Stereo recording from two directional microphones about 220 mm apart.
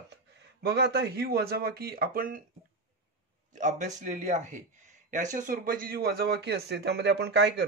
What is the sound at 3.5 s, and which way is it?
A man's voice, 35° right (ahead or behind).